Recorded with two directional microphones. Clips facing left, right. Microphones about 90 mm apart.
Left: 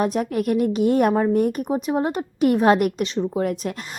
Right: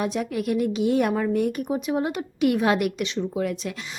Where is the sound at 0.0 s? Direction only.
45° left (ahead or behind).